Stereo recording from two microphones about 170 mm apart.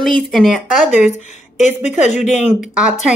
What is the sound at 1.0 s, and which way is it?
Speech, 45° left (ahead or behind).